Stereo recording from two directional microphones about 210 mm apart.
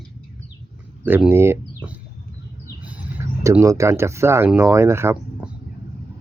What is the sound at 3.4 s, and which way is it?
Speech, 15° right (ahead or behind).